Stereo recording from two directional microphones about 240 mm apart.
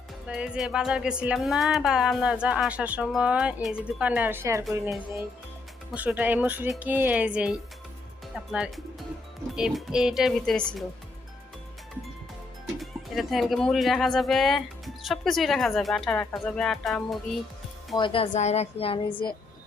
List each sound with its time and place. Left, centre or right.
0.3 s speech: centre
5.9 s speech: centre
8.5 s speech: centre
12.8 s speech: centre
17.9 s a woman's voice: left